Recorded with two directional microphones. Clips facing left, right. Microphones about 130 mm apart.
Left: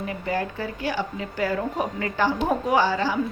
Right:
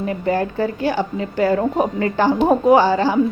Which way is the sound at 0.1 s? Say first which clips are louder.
Right 8 dB; 40° right (ahead or behind).